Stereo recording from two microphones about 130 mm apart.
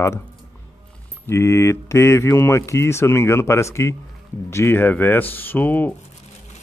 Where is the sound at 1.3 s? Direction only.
20° left (ahead or behind).